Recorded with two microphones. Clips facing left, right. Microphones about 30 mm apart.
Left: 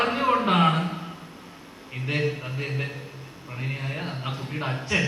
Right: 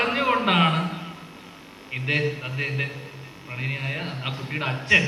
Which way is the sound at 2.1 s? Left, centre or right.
Right.